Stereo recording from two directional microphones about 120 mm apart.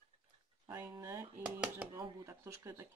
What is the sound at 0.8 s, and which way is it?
Speech, 25° right (ahead or behind).